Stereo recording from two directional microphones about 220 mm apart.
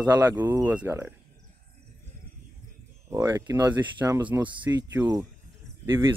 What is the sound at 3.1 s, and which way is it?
Speech, 10° right (ahead or behind).